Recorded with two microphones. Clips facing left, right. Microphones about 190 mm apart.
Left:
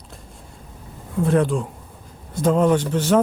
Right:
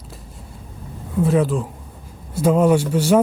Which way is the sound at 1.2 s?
5° right (ahead or behind).